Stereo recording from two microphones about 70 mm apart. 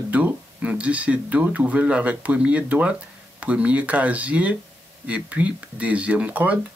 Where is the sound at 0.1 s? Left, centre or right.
Right.